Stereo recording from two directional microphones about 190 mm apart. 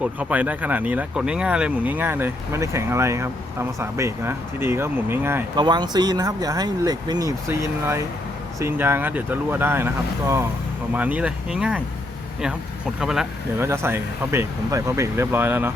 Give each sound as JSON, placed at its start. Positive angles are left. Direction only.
{"t": 0.0, "sound": "speech", "side_deg": -10}
{"t": 5.5, "sound": "speech", "side_deg": -20}
{"t": 8.5, "sound": "speech", "side_deg": -15}
{"t": 13.0, "sound": "speech", "side_deg": 0}
{"t": 13.6, "sound": "speech", "side_deg": -15}